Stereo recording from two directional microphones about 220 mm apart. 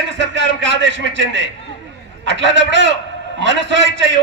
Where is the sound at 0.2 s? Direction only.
55° right (ahead or behind).